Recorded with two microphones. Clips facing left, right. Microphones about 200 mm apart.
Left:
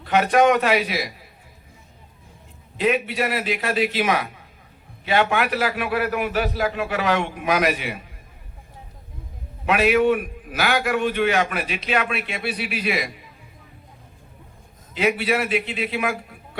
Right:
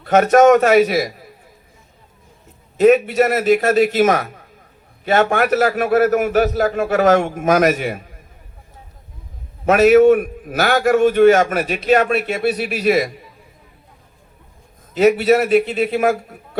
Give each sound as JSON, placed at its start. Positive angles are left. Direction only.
{"t": 0.0, "sound": "a man's voice", "side_deg": -45}
{"t": 2.7, "sound": "a man's voice", "side_deg": -45}
{"t": 9.6, "sound": "a man's voice", "side_deg": -45}
{"t": 14.9, "sound": "a man's voice", "side_deg": -40}